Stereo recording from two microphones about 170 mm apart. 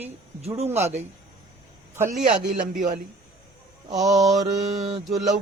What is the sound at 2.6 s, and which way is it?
Speech, 45° right (ahead or behind).